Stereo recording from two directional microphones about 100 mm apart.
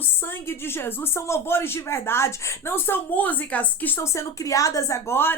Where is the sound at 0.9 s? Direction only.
25° left (ahead or behind).